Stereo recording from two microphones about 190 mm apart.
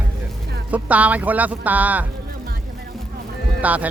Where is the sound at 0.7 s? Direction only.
5° right (ahead or behind).